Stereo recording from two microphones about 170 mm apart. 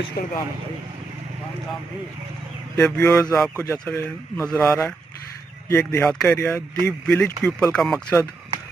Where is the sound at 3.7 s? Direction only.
15° left (ahead or behind).